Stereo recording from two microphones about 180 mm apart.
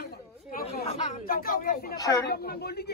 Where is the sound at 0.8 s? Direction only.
40° left (ahead or behind); by 2.0 s 55° left (ahead or behind).